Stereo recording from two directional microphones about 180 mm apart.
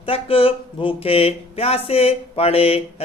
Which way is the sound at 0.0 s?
30° left (ahead or behind).